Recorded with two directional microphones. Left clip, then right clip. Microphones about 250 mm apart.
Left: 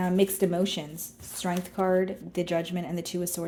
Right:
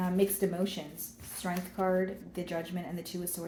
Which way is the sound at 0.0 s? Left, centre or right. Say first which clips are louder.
Left 5 dB; left.